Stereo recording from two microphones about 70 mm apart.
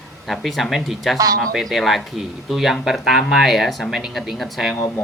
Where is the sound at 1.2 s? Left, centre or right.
Right.